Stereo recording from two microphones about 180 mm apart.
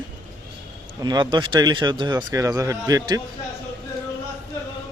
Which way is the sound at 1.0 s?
25° right (ahead or behind).